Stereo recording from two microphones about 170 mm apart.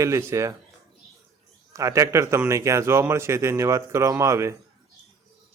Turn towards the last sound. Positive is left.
turn(degrees=-15)  # may be behind; listen again after turning